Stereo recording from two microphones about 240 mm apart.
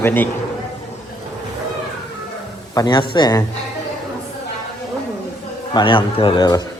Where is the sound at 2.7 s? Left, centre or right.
Centre.